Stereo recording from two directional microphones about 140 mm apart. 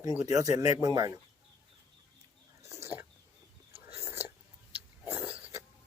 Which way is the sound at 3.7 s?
45° right (ahead or behind).